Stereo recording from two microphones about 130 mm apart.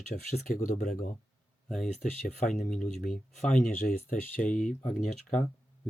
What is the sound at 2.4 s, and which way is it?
Speech, 80° left.